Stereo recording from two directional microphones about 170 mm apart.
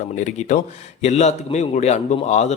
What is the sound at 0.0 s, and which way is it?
A man's voice, 45° left (ahead or behind).